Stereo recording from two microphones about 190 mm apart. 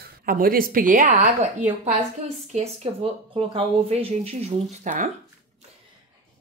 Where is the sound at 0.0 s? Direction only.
50° right (ahead or behind).